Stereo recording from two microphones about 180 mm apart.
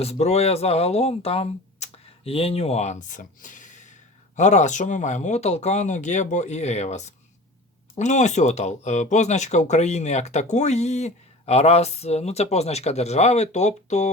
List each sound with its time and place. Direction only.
0.0 s speech: 35° left (ahead or behind)